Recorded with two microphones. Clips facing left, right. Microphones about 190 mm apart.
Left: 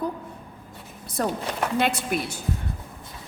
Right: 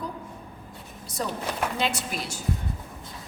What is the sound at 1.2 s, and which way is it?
A woman's voice, 55° left (ahead or behind).